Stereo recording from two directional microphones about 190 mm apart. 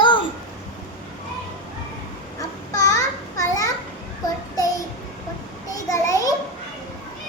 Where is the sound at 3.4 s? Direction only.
20° left (ahead or behind).